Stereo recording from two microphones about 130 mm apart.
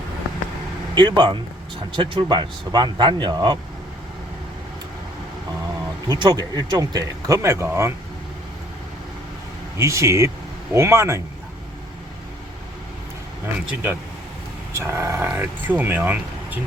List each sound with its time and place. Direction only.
0.9 s speech: 35° right (ahead or behind)
6.1 s speech: 30° right (ahead or behind)
9.7 s speech: 20° right (ahead or behind)
14.7 s speech: 20° right (ahead or behind)